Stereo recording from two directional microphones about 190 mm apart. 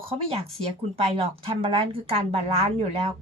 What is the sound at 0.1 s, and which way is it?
A woman's voice, 30° right (ahead or behind).